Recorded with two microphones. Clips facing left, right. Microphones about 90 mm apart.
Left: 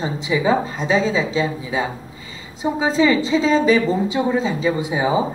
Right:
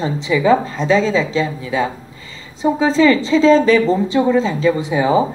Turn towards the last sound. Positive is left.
turn(degrees=15)  # may be behind; listen again after turning